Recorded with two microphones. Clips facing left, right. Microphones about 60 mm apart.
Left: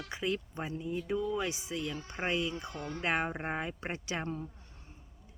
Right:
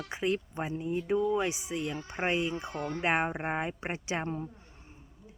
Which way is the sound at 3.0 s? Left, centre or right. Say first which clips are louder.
Right 3 dB; right.